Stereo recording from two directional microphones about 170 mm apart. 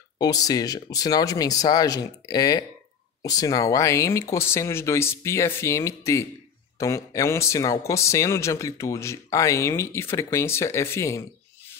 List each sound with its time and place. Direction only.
0.2 s speech: 20° left (ahead or behind)